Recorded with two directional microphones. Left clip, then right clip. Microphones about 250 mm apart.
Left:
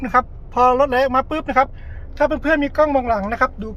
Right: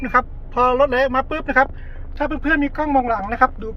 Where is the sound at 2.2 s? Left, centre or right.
Left.